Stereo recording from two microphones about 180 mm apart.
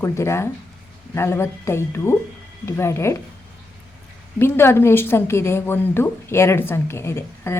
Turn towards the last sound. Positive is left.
turn(degrees=15)  # may be behind; listen again after turning